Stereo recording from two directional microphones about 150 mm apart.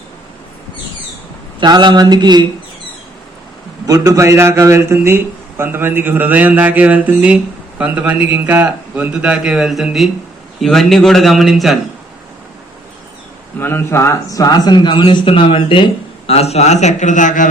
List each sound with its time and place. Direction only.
1.6 s a sound: 30° right (ahead or behind)
3.8 s a man's voice: 25° right (ahead or behind); by 11.8 s centre (ahead or behind)
13.6 s speech: 15° left (ahead or behind); by 17.5 s 60° left (ahead or behind)